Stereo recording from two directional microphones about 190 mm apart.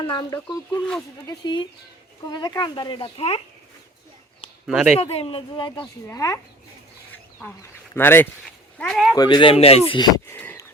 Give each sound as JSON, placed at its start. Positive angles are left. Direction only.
{"t": 0.1, "sound": "speech", "side_deg": 20}
{"t": 0.3, "sound": "speech", "side_deg": 5}
{"t": 1.3, "sound": "speech", "side_deg": 20}
{"t": 4.6, "sound": "speech", "side_deg": -5}
{"t": 4.9, "sound": "speech", "side_deg": 30}
{"t": 7.9, "sound": "speech", "side_deg": 10}
{"t": 9.1, "sound": "speech", "side_deg": 25}
{"t": 10.3, "sound": "a sound", "side_deg": 10}